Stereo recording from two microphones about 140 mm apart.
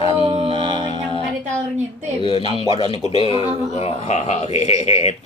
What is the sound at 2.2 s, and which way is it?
Speech, 40° left (ahead or behind).